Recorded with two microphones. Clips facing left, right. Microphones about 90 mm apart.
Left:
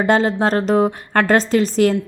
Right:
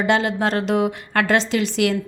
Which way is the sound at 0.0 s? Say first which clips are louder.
Left 3 dB; 40° left (ahead or behind).